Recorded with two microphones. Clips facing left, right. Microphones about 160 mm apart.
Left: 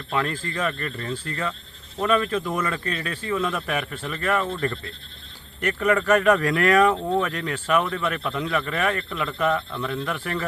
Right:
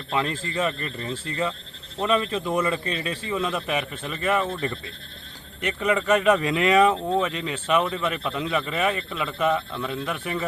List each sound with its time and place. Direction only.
0.1 s speech: 15° right (ahead or behind)
2.0 s speech: 25° right (ahead or behind)
2.5 s speech: 15° right (ahead or behind)
3.2 s speech: 15° right (ahead or behind)
6.9 s speech: 5° right (ahead or behind)